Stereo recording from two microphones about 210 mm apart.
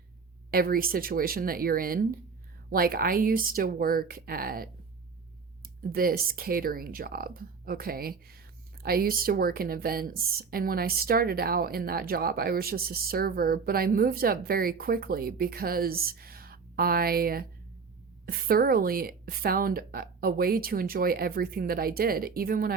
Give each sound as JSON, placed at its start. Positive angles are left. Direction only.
{"t": 0.5, "sound": "speech", "side_deg": -45}